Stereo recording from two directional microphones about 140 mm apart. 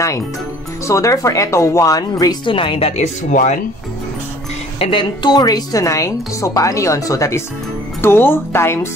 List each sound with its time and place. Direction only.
0.8 s a woman's voice: 20° left (ahead or behind); by 2.9 s 40° left (ahead or behind)
3.0 s speech: 60° left (ahead or behind)
4.7 s a woman's voice: 40° left (ahead or behind); by 8.7 s 15° left (ahead or behind)